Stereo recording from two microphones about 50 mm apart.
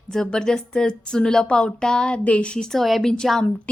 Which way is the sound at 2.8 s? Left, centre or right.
Centre.